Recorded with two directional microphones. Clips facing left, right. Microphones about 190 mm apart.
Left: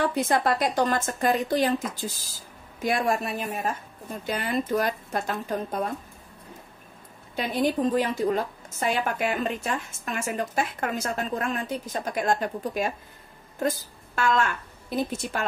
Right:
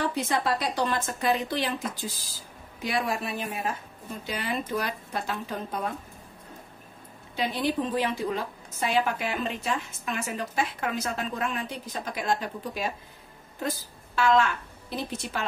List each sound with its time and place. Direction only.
0.0 s a woman's voice: 50° left (ahead or behind)
7.3 s a woman's voice: 45° left (ahead or behind)